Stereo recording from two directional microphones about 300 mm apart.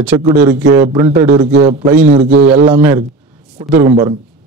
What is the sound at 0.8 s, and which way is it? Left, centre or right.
Speech, centre.